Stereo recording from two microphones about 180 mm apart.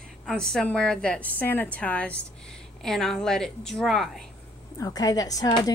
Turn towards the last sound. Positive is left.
turn(degrees=20)  # may be behind; listen again after turning